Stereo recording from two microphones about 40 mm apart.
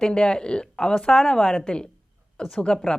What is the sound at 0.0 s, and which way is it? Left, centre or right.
A woman's voice, left.